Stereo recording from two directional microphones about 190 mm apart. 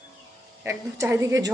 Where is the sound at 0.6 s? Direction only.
15° right (ahead or behind).